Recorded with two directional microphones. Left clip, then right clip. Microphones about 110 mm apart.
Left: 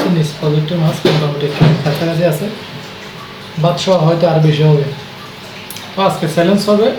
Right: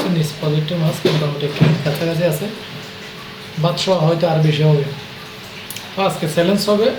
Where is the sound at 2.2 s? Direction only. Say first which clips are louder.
Left 4 dB; 10° right (ahead or behind).